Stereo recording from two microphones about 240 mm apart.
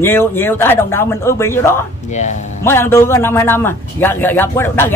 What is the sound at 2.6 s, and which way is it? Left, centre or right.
A man's voice, centre.